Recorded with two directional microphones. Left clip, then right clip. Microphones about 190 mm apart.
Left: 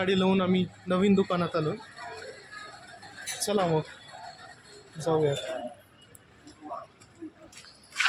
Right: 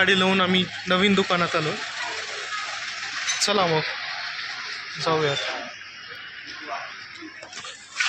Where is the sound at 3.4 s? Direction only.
10° left (ahead or behind).